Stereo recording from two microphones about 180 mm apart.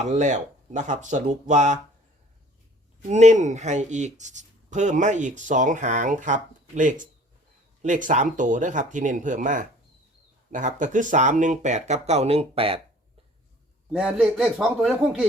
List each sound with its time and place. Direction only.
0.0 s speech: 40° right (ahead or behind)
3.1 s speech: 40° right (ahead or behind)
13.9 s a man's voice: 5° right (ahead or behind)